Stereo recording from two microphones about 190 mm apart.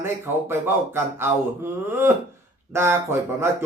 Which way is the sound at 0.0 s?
15° right (ahead or behind).